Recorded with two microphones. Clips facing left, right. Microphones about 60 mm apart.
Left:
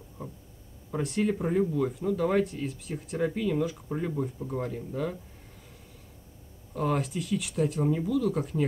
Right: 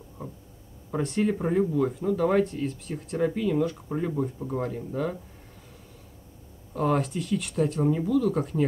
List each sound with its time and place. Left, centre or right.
0.2 s a sound: centre
0.9 s speech: centre
6.7 s speech: centre